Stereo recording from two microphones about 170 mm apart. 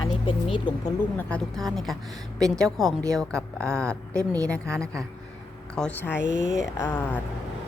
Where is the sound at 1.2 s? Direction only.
5° left (ahead or behind).